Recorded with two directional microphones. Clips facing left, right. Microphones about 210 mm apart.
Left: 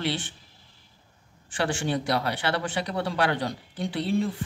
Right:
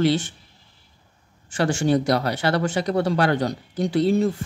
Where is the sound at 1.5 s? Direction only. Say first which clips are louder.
Right 7 dB; 45° right (ahead or behind).